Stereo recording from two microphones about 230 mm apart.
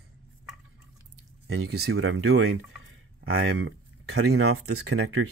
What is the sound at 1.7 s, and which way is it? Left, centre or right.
Speech, right.